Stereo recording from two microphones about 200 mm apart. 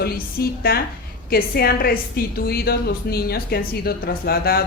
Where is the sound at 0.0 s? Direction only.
50° left (ahead or behind).